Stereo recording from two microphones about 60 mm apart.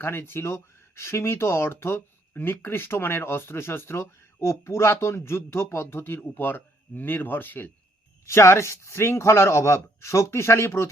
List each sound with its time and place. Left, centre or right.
0.0 s speech: left
2.0 s speech: left
8.2 s speech: left